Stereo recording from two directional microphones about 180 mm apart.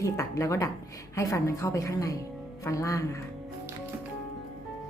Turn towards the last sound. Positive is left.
turn(degrees=20)  # may be behind; listen again after turning